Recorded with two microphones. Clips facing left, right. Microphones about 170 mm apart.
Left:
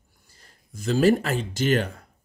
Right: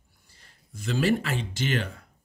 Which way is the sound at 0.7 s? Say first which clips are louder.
Left 5 dB; 40° left (ahead or behind).